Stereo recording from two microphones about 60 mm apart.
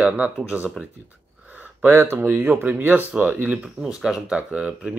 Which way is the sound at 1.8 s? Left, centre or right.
Right.